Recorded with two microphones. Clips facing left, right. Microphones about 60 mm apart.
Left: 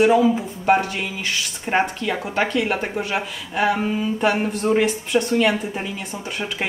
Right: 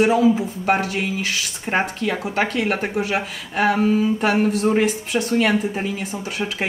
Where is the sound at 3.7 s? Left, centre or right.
Centre.